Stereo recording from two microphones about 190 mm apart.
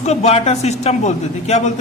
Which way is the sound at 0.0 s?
35° left (ahead or behind).